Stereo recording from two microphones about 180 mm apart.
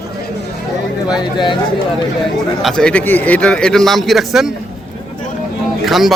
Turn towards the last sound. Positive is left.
turn(degrees=0)  # may be behind; listen again after turning